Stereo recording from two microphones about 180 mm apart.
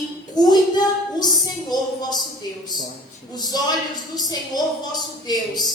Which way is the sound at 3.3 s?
20° left (ahead or behind).